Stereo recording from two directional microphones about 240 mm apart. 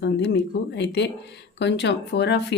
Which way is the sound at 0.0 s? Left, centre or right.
Left.